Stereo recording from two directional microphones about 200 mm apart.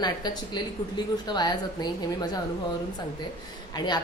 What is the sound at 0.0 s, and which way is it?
A woman's voice, 20° left (ahead or behind).